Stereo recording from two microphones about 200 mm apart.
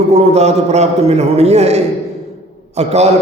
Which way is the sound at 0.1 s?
35° right (ahead or behind).